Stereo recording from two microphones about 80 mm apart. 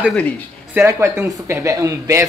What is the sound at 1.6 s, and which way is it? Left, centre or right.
Speech, right.